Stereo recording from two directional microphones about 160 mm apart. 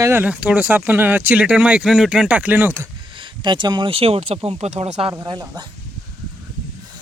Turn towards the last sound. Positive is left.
turn(degrees=-25)  # may be behind; listen again after turning